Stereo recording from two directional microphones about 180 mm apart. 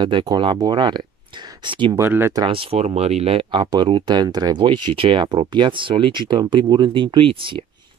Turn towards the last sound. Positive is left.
turn(degrees=-30)  # may be behind; listen again after turning